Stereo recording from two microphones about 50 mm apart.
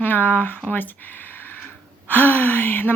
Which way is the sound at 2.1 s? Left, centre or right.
Left.